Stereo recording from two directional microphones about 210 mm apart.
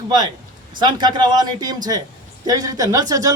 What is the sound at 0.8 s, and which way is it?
A man's voice, 20° right (ahead or behind).